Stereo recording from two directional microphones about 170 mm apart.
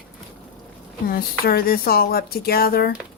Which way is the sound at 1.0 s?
60° left (ahead or behind).